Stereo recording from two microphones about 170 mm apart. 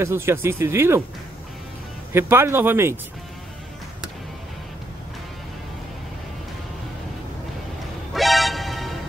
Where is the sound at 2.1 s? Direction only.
15° right (ahead or behind).